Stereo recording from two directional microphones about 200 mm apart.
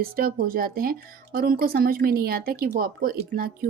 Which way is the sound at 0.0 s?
45° right (ahead or behind).